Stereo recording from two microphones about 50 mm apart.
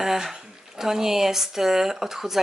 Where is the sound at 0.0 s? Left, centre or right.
Centre.